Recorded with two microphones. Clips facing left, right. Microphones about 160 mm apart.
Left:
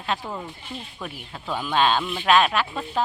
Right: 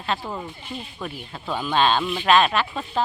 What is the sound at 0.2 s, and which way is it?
Speech, 5° right (ahead or behind).